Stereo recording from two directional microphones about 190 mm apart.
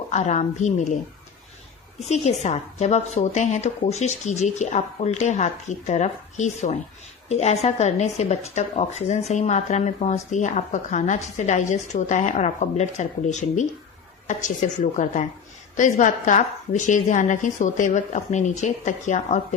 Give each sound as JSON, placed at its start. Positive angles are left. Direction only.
{"t": 0.1, "sound": "speech", "side_deg": 40}
{"t": 2.0, "sound": "speech", "side_deg": 35}